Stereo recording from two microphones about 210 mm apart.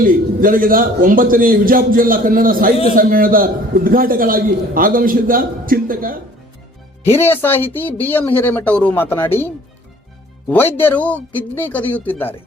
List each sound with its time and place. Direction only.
0.0 s a man's voice: 40° right (ahead or behind)
7.0 s speech: 10° left (ahead or behind)
10.5 s speech: 10° left (ahead or behind)